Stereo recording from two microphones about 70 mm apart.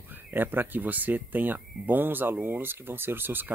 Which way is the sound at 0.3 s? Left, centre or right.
Right.